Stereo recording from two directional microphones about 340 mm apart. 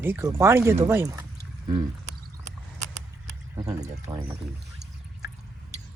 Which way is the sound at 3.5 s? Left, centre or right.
Centre.